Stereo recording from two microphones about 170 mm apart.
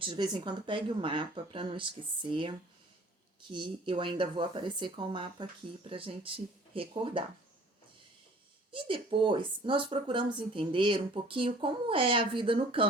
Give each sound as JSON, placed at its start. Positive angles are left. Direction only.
{"t": 0.0, "sound": "speech", "side_deg": -25}
{"t": 6.7, "sound": "speech", "side_deg": -30}
{"t": 8.7, "sound": "speech", "side_deg": -30}